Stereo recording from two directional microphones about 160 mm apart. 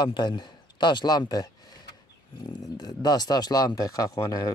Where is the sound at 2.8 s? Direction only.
25° left (ahead or behind).